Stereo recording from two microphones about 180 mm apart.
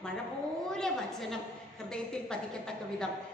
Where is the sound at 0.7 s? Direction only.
Centre (ahead or behind).